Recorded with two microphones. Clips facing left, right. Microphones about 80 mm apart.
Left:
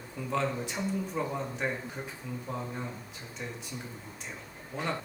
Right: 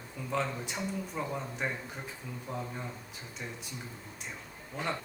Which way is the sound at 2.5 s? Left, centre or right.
Centre.